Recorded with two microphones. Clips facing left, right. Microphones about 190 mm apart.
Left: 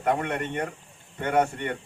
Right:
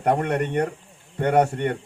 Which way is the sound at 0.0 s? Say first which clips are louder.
Right 4 dB; 40° right (ahead or behind).